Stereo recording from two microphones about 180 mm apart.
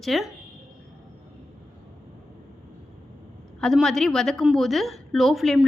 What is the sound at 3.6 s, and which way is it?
A woman's voice, centre (ahead or behind).